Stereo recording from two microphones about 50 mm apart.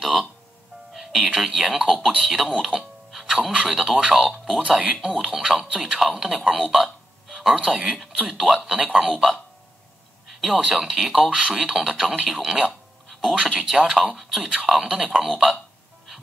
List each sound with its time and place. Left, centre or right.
0.0 s music: centre
1.2 s speech: centre
2.7 s speech: right
3.1 s speech: centre
4.6 s speech: centre